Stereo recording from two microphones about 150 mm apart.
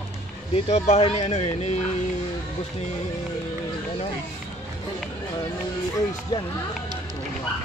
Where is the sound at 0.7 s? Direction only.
45° left (ahead or behind).